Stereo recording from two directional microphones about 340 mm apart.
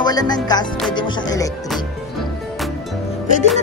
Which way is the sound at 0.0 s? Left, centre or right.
Centre.